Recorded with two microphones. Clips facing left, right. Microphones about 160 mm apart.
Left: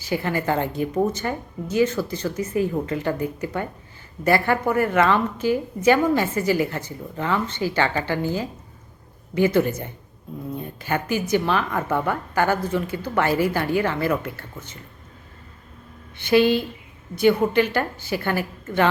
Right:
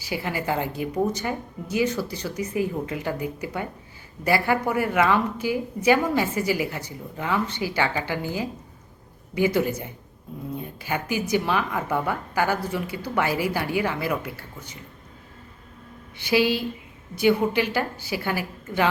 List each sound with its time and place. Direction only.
0.0 s speech: 10° right (ahead or behind)
16.1 s speech: 10° right (ahead or behind)